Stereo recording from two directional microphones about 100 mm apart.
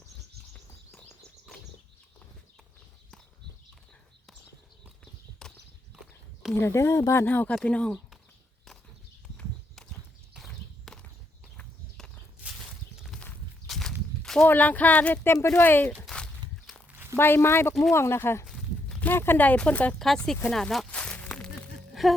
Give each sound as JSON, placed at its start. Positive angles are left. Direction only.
{"t": 5.4, "sound": "walk", "side_deg": 5}
{"t": 6.5, "sound": "speech", "side_deg": 25}
{"t": 10.3, "sound": "horse", "side_deg": 0}
{"t": 11.5, "sound": "walk", "side_deg": 10}
{"t": 12.6, "sound": "a sound", "side_deg": 0}
{"t": 13.7, "sound": "walk", "side_deg": 5}
{"t": 14.4, "sound": "speech", "side_deg": 15}
{"t": 16.0, "sound": "walk", "side_deg": 5}
{"t": 16.9, "sound": "a sound", "side_deg": -20}
{"t": 17.2, "sound": "speech", "side_deg": 25}
{"t": 18.4, "sound": "a sound", "side_deg": 5}
{"t": 20.0, "sound": "speech", "side_deg": 5}